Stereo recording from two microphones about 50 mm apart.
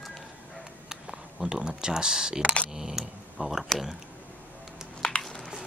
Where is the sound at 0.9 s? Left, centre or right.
Centre.